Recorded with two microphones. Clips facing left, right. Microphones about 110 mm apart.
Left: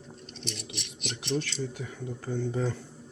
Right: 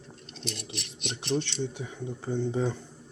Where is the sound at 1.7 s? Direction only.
15° right (ahead or behind).